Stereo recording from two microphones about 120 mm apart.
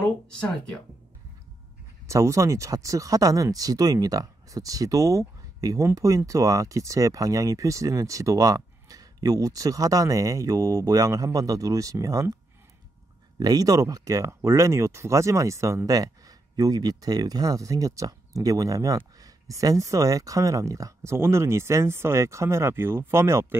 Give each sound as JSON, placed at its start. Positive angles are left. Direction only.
{"t": 0.0, "sound": "a sound", "side_deg": 10}
{"t": 2.0, "sound": "speech", "side_deg": -25}
{"t": 13.4, "sound": "speech", "side_deg": -30}